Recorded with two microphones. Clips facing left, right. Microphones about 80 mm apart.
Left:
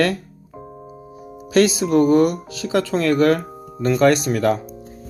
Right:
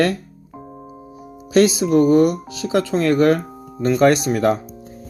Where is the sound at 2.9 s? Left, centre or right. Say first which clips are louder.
Right 1 dB; right.